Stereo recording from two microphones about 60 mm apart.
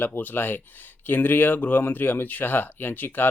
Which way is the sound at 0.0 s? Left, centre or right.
Left.